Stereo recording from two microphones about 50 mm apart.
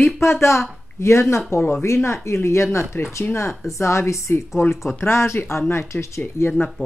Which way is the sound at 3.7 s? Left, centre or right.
Left.